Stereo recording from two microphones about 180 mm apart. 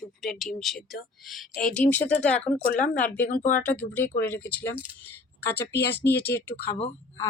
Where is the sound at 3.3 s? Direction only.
45° left (ahead or behind).